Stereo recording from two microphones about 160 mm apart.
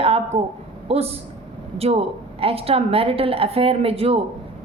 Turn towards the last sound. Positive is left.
turn(degrees=-35)  # may be behind; listen again after turning